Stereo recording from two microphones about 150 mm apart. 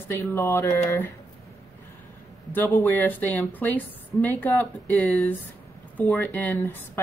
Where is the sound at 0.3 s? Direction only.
15° left (ahead or behind).